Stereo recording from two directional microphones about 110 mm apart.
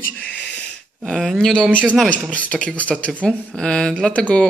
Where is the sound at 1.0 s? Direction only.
Centre (ahead or behind).